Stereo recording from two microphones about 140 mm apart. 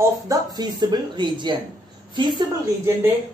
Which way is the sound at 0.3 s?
30° right (ahead or behind).